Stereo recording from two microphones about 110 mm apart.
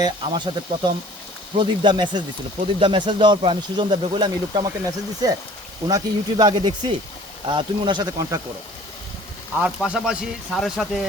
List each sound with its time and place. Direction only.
0.0 s speech: 45° right (ahead or behind)
5.2 s speech: 35° right (ahead or behind)
9.6 s speech: 10° right (ahead or behind)